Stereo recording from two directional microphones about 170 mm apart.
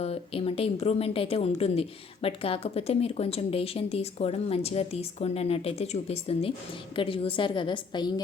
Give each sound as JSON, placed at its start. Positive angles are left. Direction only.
{"t": 0.0, "sound": "a woman's voice", "side_deg": 35}